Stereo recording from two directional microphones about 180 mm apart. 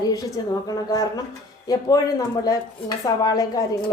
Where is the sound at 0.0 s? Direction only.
20° left (ahead or behind).